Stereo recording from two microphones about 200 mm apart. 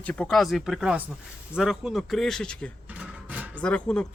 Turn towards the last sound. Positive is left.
turn(degrees=5)  # may be behind; listen again after turning